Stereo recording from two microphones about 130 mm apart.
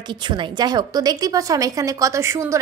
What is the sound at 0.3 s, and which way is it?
A woman's voice, 35° right (ahead or behind).